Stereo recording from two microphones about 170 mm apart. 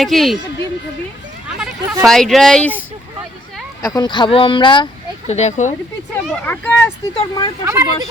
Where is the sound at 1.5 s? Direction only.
5° right (ahead or behind).